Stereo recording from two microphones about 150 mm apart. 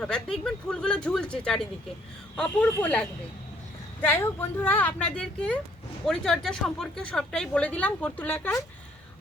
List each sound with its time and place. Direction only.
0.0 s a woman's voice: 5° left (ahead or behind)
2.6 s speech: 20° left (ahead or behind)
4.0 s a woman's voice: 15° left (ahead or behind)